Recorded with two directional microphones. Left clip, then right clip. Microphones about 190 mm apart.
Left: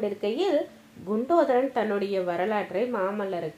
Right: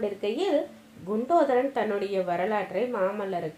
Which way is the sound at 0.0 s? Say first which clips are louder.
Left 1 dB; 40° left (ahead or behind).